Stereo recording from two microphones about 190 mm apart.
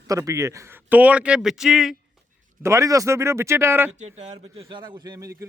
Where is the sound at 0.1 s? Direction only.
15° right (ahead or behind).